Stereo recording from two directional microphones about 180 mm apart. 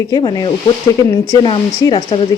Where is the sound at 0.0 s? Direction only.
20° left (ahead or behind).